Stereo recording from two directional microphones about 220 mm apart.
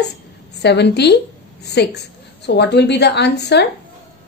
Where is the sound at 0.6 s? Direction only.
50° left (ahead or behind).